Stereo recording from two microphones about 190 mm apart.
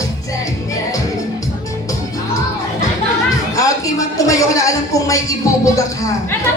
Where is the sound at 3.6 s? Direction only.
15° left (ahead or behind).